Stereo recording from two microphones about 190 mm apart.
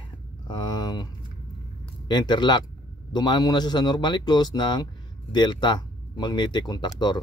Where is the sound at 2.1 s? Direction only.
25° left (ahead or behind).